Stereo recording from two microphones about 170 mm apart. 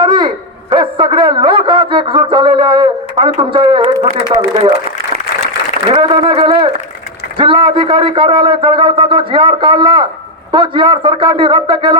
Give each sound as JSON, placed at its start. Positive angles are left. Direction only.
{"t": 0.0, "sound": "a sound", "side_deg": -25}
{"t": 4.3, "sound": "speech", "side_deg": -30}
{"t": 5.9, "sound": "a man's voice", "side_deg": -30}